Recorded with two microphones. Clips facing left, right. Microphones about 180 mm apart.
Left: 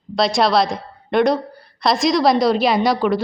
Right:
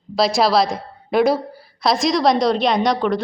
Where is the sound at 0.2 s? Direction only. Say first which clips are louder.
Even; centre (ahead or behind).